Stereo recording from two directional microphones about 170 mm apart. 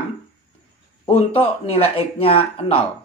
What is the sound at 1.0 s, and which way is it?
Speech, 30° left (ahead or behind).